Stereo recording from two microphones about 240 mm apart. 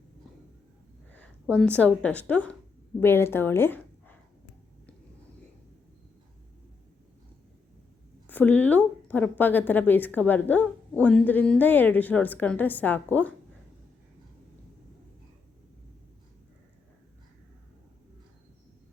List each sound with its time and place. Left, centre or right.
1.5 s a woman's voice: centre
8.3 s a woman's voice: centre